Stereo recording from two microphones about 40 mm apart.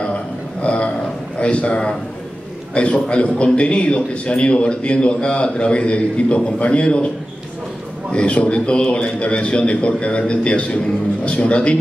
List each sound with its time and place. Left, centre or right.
0.0 s a sound: left
1.4 s a man's voice: left
8.1 s a man's voice: left